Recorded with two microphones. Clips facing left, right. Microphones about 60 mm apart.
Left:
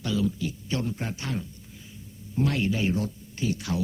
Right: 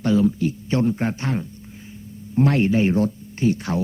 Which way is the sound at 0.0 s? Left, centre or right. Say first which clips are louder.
Right 9 dB; right.